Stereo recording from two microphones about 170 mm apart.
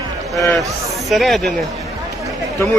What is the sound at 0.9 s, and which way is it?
Speech, centre (ahead or behind).